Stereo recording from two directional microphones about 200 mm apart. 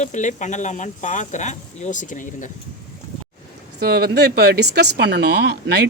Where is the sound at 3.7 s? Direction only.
50° right (ahead or behind).